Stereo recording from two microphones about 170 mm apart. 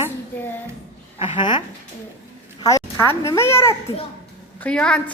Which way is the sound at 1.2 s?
30° left (ahead or behind).